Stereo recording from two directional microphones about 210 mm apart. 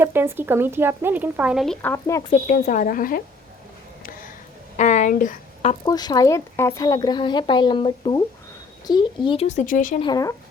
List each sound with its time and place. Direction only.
0.0 s speech: 10° right (ahead or behind); by 2.2 s 15° left (ahead or behind)
2.3 s speech: 40° left (ahead or behind)
4.8 s a sound: 35° left (ahead or behind)
5.8 s a woman's voice: 20° left (ahead or behind); by 10.0 s 40° left (ahead or behind)
10.0 s speech: 20° left (ahead or behind)